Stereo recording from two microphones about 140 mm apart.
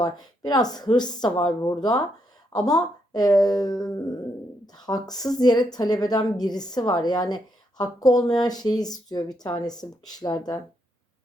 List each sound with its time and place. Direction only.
0.0 s a woman's voice: 30° left (ahead or behind)